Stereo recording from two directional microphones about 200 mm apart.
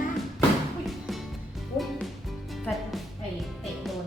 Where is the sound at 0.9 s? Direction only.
Centre (ahead or behind).